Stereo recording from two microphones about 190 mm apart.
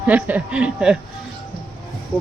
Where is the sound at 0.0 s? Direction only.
10° right (ahead or behind).